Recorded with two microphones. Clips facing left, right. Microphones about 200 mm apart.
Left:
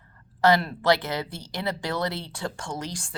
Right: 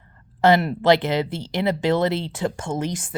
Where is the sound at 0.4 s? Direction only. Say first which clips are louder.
Right 4 dB; 20° right (ahead or behind).